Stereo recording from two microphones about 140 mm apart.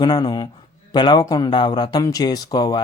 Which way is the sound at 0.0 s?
30° left (ahead or behind).